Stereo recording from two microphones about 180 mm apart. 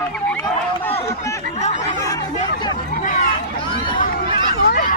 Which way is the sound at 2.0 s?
20° left (ahead or behind).